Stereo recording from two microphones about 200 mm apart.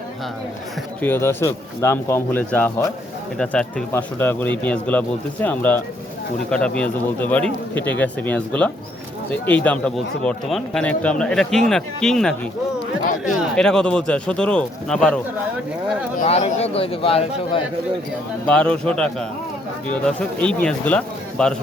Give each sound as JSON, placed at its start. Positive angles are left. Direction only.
{"t": 1.0, "sound": "a man's voice", "side_deg": 10}
{"t": 13.4, "sound": "a man's voice", "side_deg": 5}
{"t": 16.1, "sound": "speech", "side_deg": 35}
{"t": 18.4, "sound": "a man's voice", "side_deg": 5}